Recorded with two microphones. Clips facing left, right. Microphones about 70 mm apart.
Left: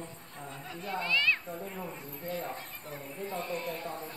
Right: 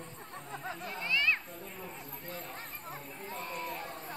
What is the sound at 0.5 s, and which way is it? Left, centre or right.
Chatter, right.